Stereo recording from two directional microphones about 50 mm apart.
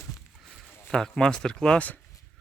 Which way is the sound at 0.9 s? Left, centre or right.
Centre.